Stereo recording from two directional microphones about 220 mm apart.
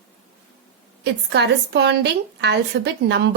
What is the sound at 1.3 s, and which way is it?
A woman's voice, 50° right (ahead or behind).